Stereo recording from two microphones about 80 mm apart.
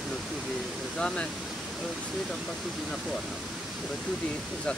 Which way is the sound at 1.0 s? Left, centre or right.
Centre.